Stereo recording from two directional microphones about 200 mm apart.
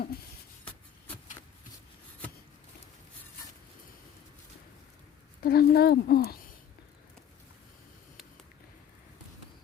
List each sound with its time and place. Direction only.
5.4 s speech: 50° left (ahead or behind)